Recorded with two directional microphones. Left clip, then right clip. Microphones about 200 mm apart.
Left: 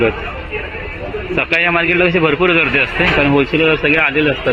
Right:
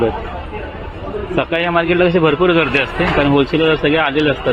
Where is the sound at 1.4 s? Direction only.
5° right (ahead or behind).